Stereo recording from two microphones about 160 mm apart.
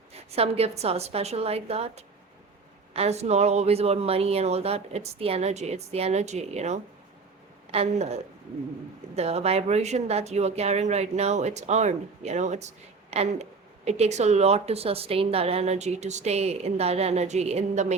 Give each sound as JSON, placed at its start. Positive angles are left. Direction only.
{"t": 0.1, "sound": "speech", "side_deg": -40}